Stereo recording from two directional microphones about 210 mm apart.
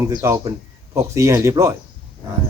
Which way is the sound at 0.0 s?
15° right (ahead or behind).